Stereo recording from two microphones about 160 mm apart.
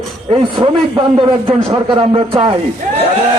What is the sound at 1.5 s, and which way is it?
A man's voice, 30° right (ahead or behind).